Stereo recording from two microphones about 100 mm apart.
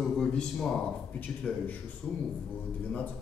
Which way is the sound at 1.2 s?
15° left (ahead or behind).